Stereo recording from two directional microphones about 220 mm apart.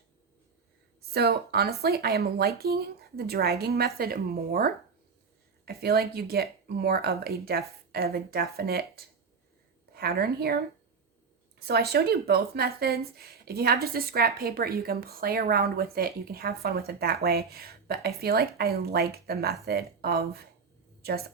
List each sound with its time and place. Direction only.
1.1 s a woman's voice: 45° right (ahead or behind)
11.6 s a woman's voice: 45° right (ahead or behind)